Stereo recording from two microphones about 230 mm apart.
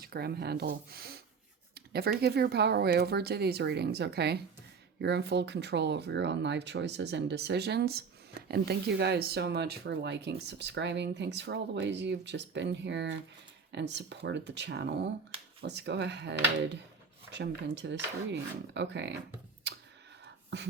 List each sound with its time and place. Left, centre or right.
0.0 s speech: right
19.6 s a sound: right
20.5 s speech: right